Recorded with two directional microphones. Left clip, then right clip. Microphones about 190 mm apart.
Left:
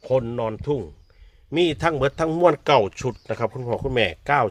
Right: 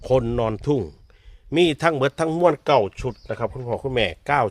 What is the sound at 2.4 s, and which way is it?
A man's voice, 5° right (ahead or behind).